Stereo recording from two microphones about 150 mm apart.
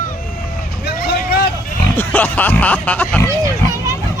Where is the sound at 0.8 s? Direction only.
85° left.